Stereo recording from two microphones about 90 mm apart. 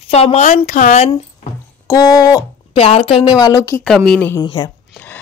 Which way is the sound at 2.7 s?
90° left.